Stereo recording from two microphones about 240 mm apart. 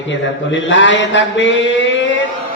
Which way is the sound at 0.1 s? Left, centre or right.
Left.